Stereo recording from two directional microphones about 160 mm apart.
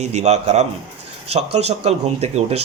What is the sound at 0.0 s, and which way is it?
Speech, 45° right (ahead or behind).